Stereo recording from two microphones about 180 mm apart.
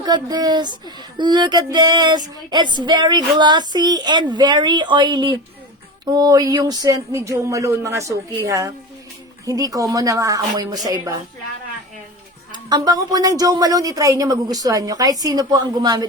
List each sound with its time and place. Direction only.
0.0 s music: 20° right (ahead or behind)
6.1 s speech: 20° right (ahead or behind)
9.5 s music: 20° right (ahead or behind)
12.6 s music: 20° right (ahead or behind)